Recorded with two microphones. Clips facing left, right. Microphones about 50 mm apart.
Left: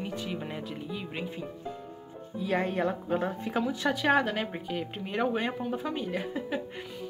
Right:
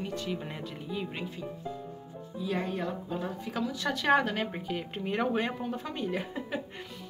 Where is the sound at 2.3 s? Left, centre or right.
Left.